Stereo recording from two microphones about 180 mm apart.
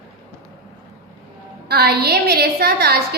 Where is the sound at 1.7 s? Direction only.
60° right (ahead or behind).